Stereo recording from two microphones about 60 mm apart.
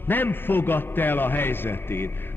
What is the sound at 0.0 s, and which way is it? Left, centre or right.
A man's voice, left.